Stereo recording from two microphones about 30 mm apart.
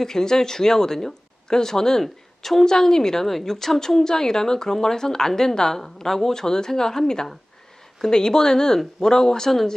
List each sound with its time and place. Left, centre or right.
0.0 s a woman's voice: centre
2.6 s speech: centre
3.2 s a woman's voice: centre
8.0 s a woman's voice: centre